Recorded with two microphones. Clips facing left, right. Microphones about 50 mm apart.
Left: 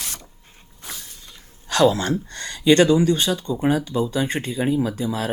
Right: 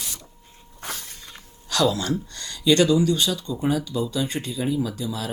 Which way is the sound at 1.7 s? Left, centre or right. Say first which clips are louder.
Left 4 dB; left.